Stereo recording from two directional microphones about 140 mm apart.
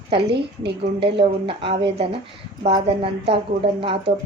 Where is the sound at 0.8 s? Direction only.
40° right (ahead or behind).